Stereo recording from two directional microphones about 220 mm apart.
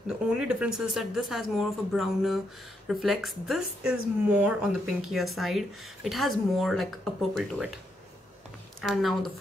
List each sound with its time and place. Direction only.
0.3 s speech: 5° right (ahead or behind)
8.8 s speech: centre (ahead or behind)